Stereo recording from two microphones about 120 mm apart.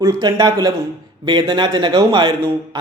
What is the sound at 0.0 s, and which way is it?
Speech, 30° right (ahead or behind).